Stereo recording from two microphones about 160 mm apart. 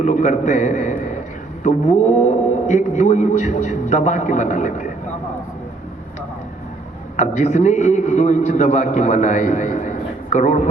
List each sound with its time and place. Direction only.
0.0 s a man's voice: 50° left (ahead or behind)
7.2 s a man's voice: 50° left (ahead or behind)